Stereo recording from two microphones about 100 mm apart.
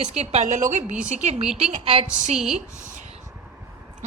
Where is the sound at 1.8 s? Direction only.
90° right.